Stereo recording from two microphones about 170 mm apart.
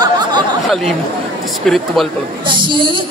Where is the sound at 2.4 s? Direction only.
30° right (ahead or behind).